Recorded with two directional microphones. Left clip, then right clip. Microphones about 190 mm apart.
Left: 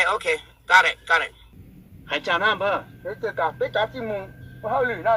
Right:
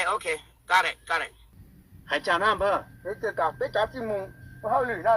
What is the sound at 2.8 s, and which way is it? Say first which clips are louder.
Speech: left 2 dB; 20° right (ahead or behind).